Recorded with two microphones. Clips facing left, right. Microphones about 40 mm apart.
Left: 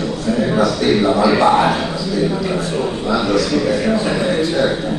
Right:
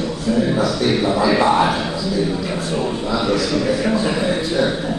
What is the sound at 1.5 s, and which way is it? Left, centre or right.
Speech, left.